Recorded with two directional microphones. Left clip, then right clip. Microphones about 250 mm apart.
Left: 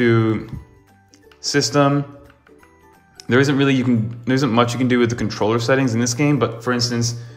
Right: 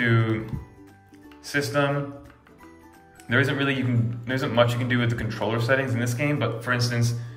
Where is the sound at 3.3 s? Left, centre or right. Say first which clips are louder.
Left 7 dB; centre.